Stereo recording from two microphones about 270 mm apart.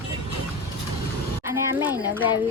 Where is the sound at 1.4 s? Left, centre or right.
Centre.